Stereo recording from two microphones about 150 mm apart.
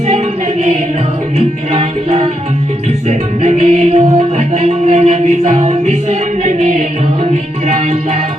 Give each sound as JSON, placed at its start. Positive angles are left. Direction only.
{"t": 1.4, "sound": "music", "side_deg": -45}